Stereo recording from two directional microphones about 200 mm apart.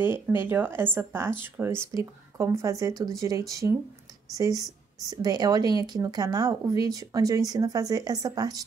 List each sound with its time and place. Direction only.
0.0 s speech: 10° right (ahead or behind)